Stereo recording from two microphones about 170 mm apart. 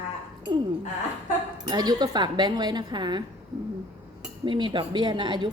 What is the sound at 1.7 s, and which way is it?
A woman's voice, 25° right (ahead or behind).